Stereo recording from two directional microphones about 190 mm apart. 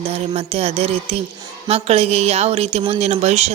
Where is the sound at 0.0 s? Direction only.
35° right (ahead or behind).